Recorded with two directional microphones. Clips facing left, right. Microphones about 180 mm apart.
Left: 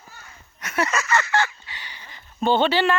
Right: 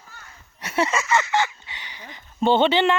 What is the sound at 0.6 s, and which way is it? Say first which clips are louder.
Speech: right 2 dB; 30° right (ahead or behind).